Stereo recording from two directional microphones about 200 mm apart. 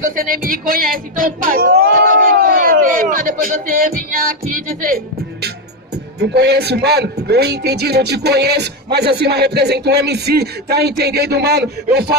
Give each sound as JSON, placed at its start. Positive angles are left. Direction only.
{"t": 0.0, "sound": "speech", "side_deg": -45}
{"t": 6.1, "sound": "speech", "side_deg": -55}